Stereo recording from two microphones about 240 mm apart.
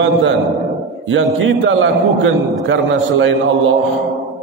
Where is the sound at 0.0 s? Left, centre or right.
Right.